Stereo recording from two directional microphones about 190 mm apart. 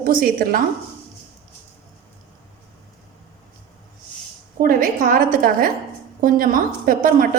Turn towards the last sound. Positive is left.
turn(degrees=-45)  # may be behind; listen again after turning